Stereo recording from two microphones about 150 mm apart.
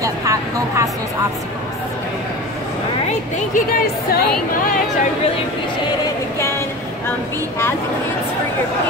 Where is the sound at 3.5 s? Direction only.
85° left.